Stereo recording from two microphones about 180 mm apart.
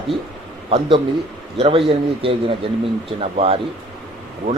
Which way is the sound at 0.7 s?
30° right (ahead or behind).